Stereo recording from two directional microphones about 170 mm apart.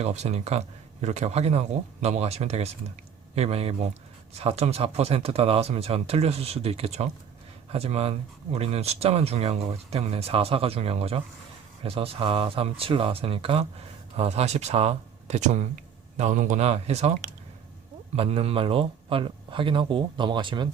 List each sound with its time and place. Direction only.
0.0 s speech: 40° right (ahead or behind)